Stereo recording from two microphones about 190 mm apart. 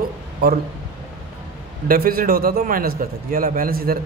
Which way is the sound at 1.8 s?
50° right (ahead or behind).